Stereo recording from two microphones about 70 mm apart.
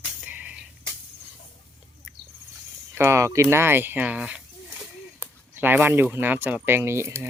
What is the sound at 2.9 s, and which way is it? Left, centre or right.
Speech, right.